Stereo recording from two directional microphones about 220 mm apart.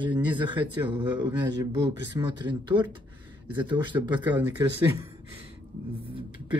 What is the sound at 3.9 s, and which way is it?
Speech, 15° right (ahead or behind).